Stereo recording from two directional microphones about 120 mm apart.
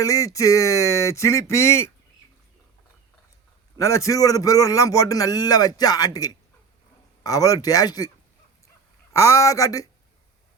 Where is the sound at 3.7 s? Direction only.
25° left (ahead or behind).